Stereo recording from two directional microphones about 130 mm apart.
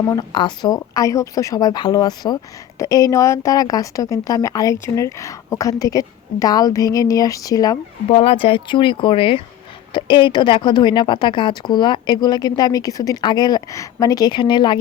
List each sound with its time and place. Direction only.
0.3 s speech: 35° left (ahead or behind)
8.1 s speech: 45° left (ahead or behind)